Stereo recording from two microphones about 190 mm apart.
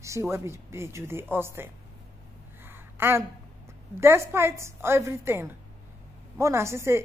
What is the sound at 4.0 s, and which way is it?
A woman's voice, 15° right (ahead or behind).